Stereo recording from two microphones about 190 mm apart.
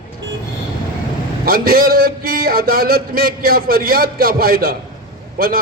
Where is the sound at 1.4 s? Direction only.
50° right (ahead or behind).